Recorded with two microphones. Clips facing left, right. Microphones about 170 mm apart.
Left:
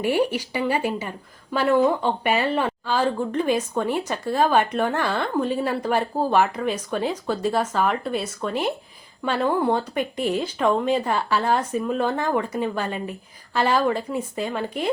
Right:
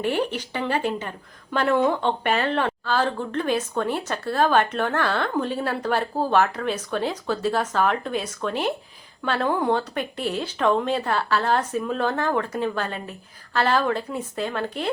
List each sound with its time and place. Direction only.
0.0 s speech: 10° left (ahead or behind)